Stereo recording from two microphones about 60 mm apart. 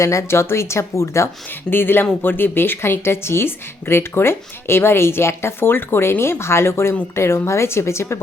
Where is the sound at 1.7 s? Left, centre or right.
Left.